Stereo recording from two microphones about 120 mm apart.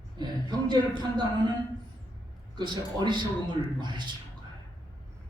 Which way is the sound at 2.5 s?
40° right (ahead or behind).